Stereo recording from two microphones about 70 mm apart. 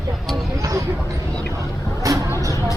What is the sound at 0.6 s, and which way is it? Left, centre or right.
Vehicle, right.